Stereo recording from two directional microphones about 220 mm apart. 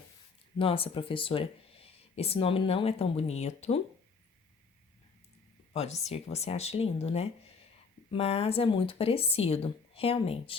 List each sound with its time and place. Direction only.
0.6 s speech: 25° left (ahead or behind)
5.7 s speech: 30° left (ahead or behind)